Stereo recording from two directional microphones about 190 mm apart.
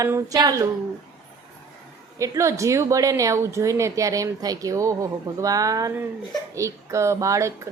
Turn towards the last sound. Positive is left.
turn(degrees=-15)  # may be behind; listen again after turning